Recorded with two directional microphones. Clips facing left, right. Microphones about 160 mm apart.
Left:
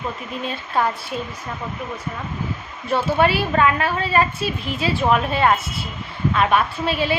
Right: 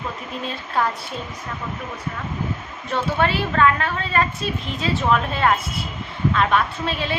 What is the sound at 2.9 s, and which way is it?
A woman's voice, 10° left (ahead or behind).